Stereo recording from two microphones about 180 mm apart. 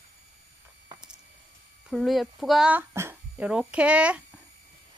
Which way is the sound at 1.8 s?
Centre (ahead or behind).